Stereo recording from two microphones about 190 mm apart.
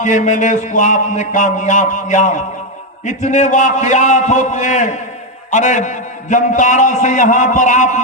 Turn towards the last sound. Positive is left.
turn(degrees=40)  # may be behind; listen again after turning